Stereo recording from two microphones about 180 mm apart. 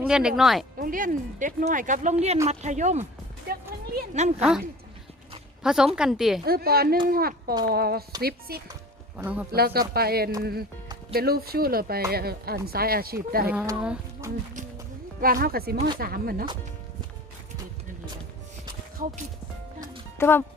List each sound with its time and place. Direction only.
0.1 s a woman's voice: 5° right (ahead or behind)
0.8 s speech: 50° right (ahead or behind)
4.1 s speech: 40° right (ahead or behind)
4.4 s a woman's voice: 5° right (ahead or behind)
5.6 s a woman's voice: 5° right (ahead or behind)
6.4 s speech: 60° right (ahead or behind)
9.1 s speech: 10° right (ahead or behind)
9.5 s speech: 60° right (ahead or behind)
13.8 s speech: 15° right (ahead or behind)
15.2 s speech: 55° right (ahead or behind)
18.7 s music: 55° right (ahead or behind)
20.1 s speech: 10° left (ahead or behind)